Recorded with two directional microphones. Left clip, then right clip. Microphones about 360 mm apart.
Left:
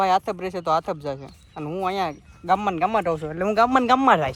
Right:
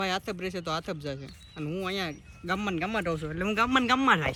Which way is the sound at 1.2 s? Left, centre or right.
Centre.